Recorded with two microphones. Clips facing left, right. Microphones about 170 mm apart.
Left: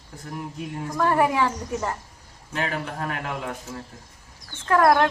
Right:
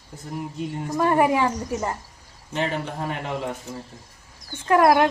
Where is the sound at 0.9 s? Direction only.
15° right (ahead or behind).